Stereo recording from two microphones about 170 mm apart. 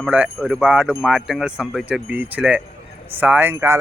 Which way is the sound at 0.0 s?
5° right (ahead or behind).